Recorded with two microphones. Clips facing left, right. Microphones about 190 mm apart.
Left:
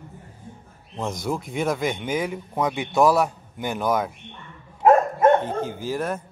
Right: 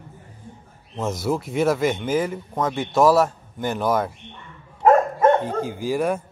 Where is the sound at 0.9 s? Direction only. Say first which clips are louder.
Right 3 dB; 5° right (ahead or behind).